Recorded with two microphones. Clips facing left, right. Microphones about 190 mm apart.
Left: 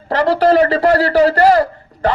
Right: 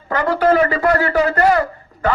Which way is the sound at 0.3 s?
35° left (ahead or behind).